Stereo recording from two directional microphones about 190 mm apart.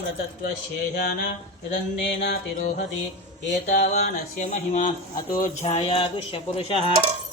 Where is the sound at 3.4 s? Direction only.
60° left (ahead or behind).